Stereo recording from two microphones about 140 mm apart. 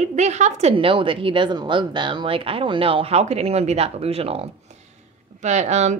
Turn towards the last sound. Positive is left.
turn(degrees=-55)  # may be behind; listen again after turning